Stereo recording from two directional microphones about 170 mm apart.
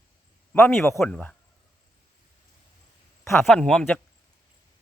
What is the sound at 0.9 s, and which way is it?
Speech, 10° left (ahead or behind).